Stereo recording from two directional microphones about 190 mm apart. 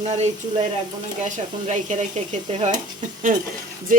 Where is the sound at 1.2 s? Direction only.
40° right (ahead or behind).